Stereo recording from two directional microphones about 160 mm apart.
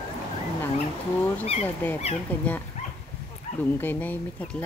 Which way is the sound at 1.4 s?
40° left (ahead or behind).